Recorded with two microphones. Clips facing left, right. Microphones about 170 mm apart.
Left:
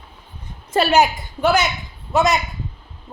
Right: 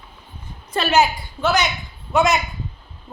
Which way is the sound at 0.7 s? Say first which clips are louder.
Left 4 dB; 35° left (ahead or behind).